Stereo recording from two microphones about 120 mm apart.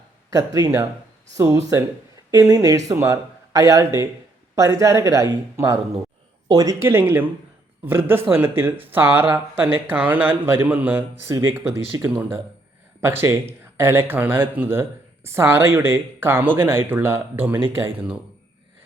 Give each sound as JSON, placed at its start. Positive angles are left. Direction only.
{"t": 0.3, "sound": "speech", "side_deg": -30}